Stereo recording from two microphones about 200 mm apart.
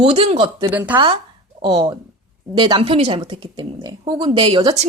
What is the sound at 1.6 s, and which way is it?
Speech, 25° right (ahead or behind).